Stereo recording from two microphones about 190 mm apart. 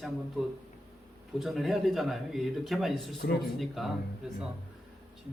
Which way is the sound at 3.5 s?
Centre (ahead or behind).